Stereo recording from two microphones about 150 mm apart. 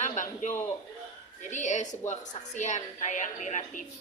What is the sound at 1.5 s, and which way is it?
Speech, 55° left (ahead or behind).